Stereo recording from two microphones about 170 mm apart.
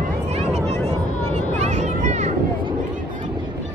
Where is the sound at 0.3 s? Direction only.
40° right (ahead or behind).